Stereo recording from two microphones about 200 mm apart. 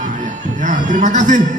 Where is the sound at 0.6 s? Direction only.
40° right (ahead or behind).